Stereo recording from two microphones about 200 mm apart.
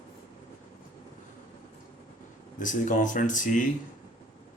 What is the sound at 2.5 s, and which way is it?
Speech, 40° left (ahead or behind).